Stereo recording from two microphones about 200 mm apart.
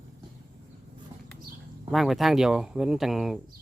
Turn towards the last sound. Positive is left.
turn(degrees=0)  # may be behind; listen again after turning